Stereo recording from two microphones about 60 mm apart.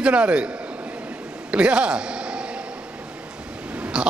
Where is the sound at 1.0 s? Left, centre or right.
Centre.